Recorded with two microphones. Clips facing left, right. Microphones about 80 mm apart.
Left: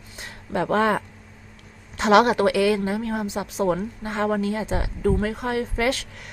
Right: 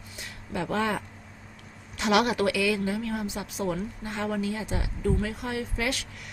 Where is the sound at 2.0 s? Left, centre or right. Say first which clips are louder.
Left 7 dB; left.